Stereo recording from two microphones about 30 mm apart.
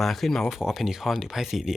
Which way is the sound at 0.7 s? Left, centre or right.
Centre.